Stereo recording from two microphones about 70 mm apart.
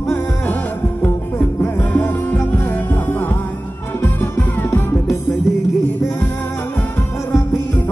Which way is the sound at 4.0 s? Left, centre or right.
Left.